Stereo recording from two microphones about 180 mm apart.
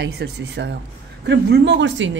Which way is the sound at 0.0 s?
65° right (ahead or behind).